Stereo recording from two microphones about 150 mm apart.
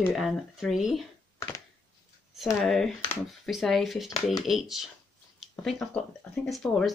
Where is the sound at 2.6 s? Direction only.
5° left (ahead or behind).